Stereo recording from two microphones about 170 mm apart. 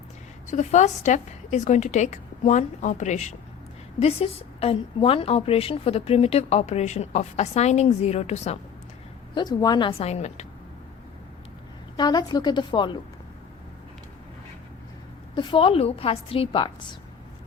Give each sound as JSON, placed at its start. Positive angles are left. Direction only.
{"t": 0.4, "sound": "a woman's voice", "side_deg": 45}
{"t": 9.3, "sound": "a woman's voice", "side_deg": 25}
{"t": 10.0, "sound": "a woman's voice", "side_deg": 40}
{"t": 11.9, "sound": "a woman's voice", "side_deg": 25}
{"t": 15.4, "sound": "a woman's voice", "side_deg": 30}